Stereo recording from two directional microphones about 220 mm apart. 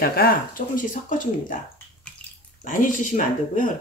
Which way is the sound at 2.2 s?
5° left (ahead or behind).